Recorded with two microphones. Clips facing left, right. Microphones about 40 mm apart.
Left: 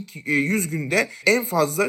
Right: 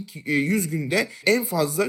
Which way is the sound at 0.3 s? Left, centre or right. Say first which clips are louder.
Left 1 dB; left.